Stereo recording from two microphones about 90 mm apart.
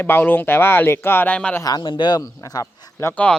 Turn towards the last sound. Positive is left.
turn(degrees=15)  # may be behind; listen again after turning